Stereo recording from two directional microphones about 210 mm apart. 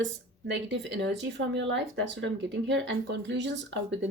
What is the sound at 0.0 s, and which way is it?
Speech, 60° right (ahead or behind).